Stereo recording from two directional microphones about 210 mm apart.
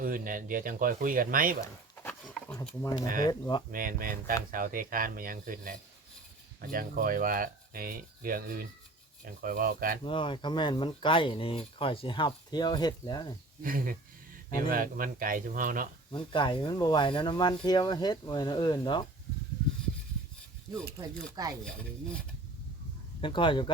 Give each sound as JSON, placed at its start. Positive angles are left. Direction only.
{"t": 0.0, "sound": "speech", "side_deg": -40}
{"t": 1.6, "sound": "a sound", "side_deg": 10}
{"t": 2.8, "sound": "speech", "side_deg": 15}
{"t": 3.7, "sound": "speech", "side_deg": -40}
{"t": 10.0, "sound": "speech", "side_deg": 25}
{"t": 13.6, "sound": "speech", "side_deg": -40}
{"t": 16.1, "sound": "speech", "side_deg": 25}
{"t": 21.4, "sound": "speech", "side_deg": -15}
{"t": 23.2, "sound": "speech", "side_deg": 25}